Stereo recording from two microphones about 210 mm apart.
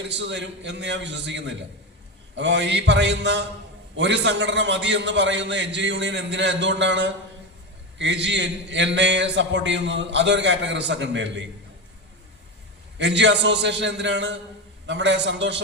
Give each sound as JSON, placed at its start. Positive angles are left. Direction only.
{"t": 0.0, "sound": "a man's voice", "side_deg": -60}
{"t": 13.0, "sound": "a man's voice", "side_deg": -60}